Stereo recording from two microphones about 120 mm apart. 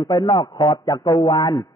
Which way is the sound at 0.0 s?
35° left (ahead or behind).